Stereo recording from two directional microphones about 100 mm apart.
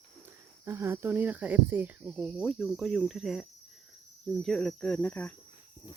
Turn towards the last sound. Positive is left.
turn(degrees=15)  # may be behind; listen again after turning